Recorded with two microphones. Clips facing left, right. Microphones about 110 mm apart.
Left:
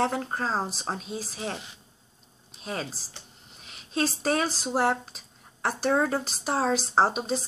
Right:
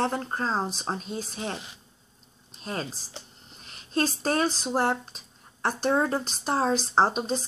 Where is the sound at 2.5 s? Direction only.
Centre (ahead or behind).